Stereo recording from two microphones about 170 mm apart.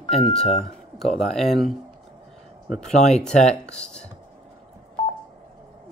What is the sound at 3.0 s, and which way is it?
Speech, 40° left (ahead or behind).